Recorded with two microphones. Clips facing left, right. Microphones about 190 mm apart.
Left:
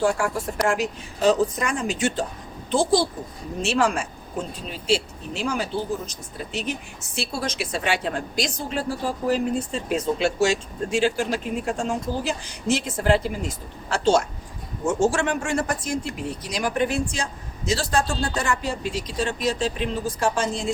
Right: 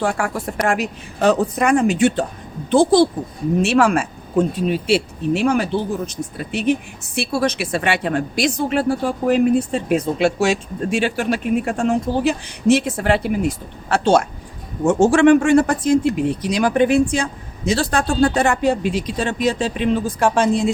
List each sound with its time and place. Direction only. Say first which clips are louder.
0.0 s a woman's voice: right 1 dB; 60° right (ahead or behind)